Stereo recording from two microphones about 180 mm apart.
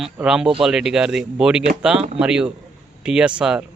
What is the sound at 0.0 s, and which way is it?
A man's voice, 5° right (ahead or behind).